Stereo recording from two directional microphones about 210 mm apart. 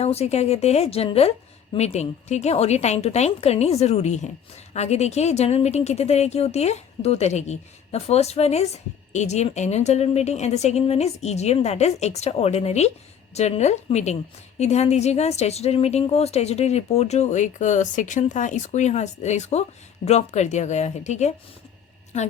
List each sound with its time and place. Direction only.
0.0 s a woman's voice: 30° left (ahead or behind)